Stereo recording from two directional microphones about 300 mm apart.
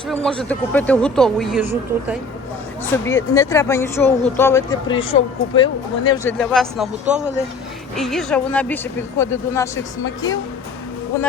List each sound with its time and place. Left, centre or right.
0.3 s speech: centre
3.1 s speech: centre
6.1 s speech: centre